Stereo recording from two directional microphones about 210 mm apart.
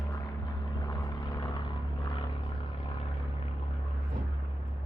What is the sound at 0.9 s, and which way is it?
Vehicle, 20° left (ahead or behind).